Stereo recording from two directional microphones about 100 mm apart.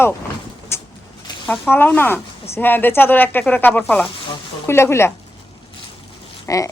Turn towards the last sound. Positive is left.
turn(degrees=35)  # may be behind; listen again after turning